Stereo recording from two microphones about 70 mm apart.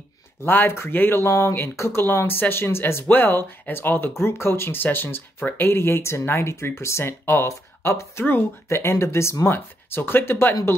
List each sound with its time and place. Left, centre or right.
0.5 s speech: left